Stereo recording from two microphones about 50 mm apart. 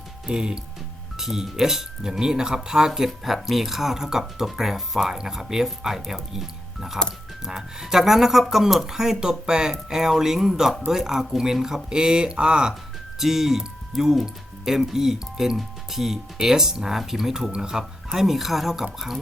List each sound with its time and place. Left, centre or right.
0.3 s speech: centre
13.1 s speech: centre